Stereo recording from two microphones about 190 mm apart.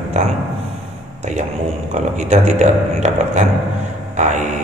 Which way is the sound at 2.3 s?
35° right (ahead or behind).